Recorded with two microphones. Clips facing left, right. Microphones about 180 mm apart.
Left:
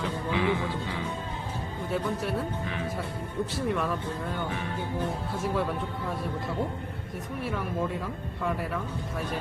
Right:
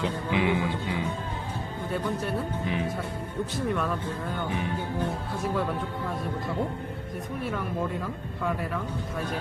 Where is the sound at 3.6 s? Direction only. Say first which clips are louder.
Right 1 dB; centre (ahead or behind).